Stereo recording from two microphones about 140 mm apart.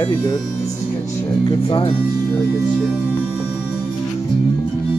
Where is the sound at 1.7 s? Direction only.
40° left (ahead or behind).